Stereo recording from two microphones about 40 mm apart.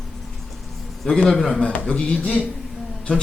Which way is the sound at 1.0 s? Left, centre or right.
Centre.